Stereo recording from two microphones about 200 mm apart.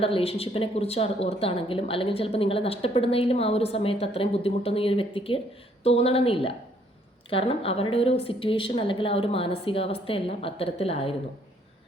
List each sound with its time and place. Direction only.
0.0 s a woman's voice: 30° left (ahead or behind)